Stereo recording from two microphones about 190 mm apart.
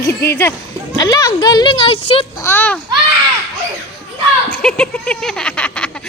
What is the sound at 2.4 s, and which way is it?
Speech, 10° left (ahead or behind).